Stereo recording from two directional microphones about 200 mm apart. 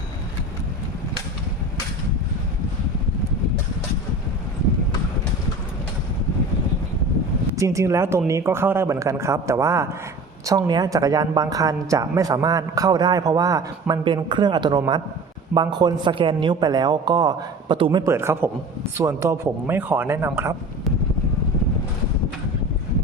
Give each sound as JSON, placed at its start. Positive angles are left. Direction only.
{"t": 7.5, "sound": "a woman's voice", "side_deg": -15}
{"t": 18.0, "sound": "a woman's voice", "side_deg": -15}